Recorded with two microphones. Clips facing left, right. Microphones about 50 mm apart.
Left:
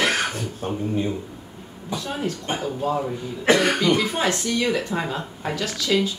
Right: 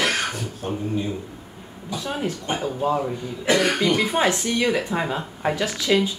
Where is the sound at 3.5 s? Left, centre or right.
Left.